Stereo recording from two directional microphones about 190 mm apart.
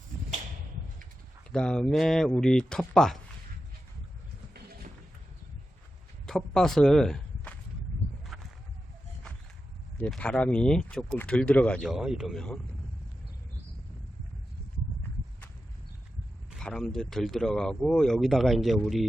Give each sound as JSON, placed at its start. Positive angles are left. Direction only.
{"t": 1.5, "sound": "speech", "side_deg": 5}
{"t": 6.2, "sound": "speech", "side_deg": 0}
{"t": 8.3, "sound": "a sound", "side_deg": 0}
{"t": 10.0, "sound": "speech", "side_deg": 5}
{"t": 16.5, "sound": "speech", "side_deg": 0}